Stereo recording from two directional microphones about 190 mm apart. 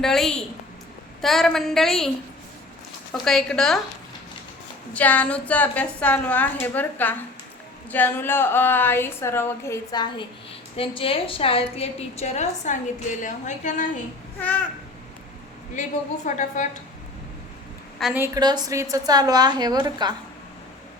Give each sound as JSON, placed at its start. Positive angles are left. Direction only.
{"t": 0.0, "sound": "a woman's voice", "side_deg": 0}
{"t": 3.1, "sound": "a woman's voice", "side_deg": 5}
{"t": 4.9, "sound": "a woman's voice", "side_deg": 10}
{"t": 14.3, "sound": "a woman's voice", "side_deg": 10}
{"t": 16.2, "sound": "a woman's voice", "side_deg": 40}
{"t": 18.0, "sound": "a woman's voice", "side_deg": -10}
{"t": 18.3, "sound": "a woman's voice", "side_deg": -20}